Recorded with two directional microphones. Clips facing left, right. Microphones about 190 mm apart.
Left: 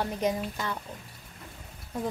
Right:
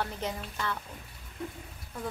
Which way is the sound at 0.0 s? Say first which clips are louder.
Left 6 dB; 15° left (ahead or behind).